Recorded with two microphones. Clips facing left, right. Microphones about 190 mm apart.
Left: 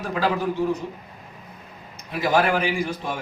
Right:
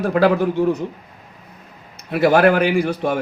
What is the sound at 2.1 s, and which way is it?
A man's voice, 60° right (ahead or behind).